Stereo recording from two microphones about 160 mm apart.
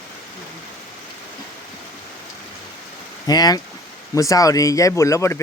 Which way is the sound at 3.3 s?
25° left (ahead or behind).